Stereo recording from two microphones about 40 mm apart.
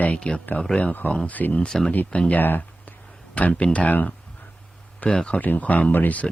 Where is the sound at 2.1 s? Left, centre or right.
Left.